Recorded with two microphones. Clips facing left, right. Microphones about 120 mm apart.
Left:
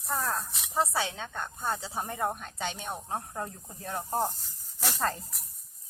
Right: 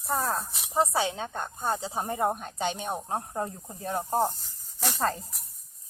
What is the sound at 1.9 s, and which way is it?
Speech, 20° right (ahead or behind).